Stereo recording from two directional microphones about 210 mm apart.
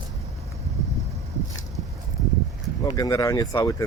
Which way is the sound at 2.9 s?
15° left (ahead or behind).